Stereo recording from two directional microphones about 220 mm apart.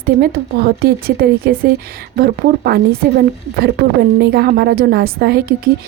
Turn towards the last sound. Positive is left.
turn(degrees=-45)  # may be behind; listen again after turning